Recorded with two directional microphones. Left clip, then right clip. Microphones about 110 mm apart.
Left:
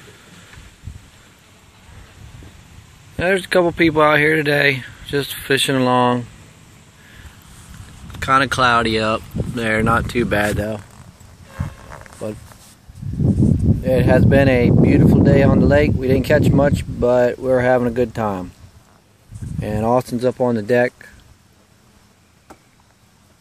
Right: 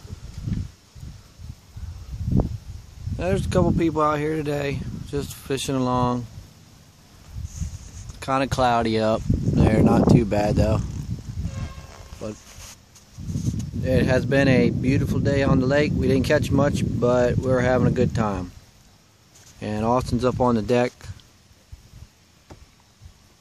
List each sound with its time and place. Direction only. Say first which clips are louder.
3.2 s speech: left 7 dB; 20° right (ahead or behind)
8.3 s speech: left 6 dB; 50° right (ahead or behind)
10.2 s speech: left 3 dB; 45° right (ahead or behind)
12.2 s speech: left 6 dB; 10° left (ahead or behind)
13.8 s speech: left 6 dB; 15° right (ahead or behind)
19.6 s speech: left 5 dB; 5° right (ahead or behind)
20.3 s speech: left 4 dB; 30° right (ahead or behind)